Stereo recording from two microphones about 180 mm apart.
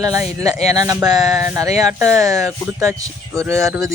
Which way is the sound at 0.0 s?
20° right (ahead or behind).